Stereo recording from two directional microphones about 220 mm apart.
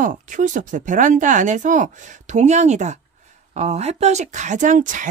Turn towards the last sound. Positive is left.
turn(degrees=-35)  # may be behind; listen again after turning